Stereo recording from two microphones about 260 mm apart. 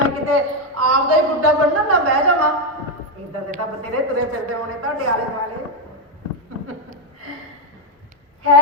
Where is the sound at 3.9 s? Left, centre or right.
Right.